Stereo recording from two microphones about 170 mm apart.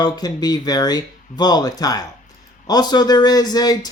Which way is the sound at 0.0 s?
25° left (ahead or behind).